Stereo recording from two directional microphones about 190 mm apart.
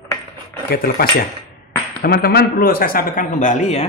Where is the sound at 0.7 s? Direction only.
50° left (ahead or behind).